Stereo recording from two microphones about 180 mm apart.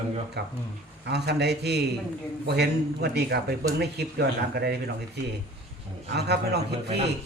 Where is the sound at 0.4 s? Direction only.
65° right (ahead or behind).